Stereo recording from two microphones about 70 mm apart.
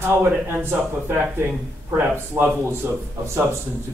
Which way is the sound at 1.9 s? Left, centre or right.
Right.